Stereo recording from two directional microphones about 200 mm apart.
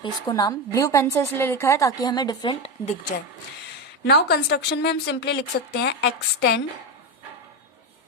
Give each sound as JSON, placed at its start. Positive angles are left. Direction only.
{"t": 0.0, "sound": "a woman's voice", "side_deg": 20}
{"t": 4.0, "sound": "a woman's voice", "side_deg": 55}